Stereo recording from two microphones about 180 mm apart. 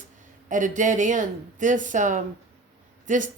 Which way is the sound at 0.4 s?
45° right (ahead or behind).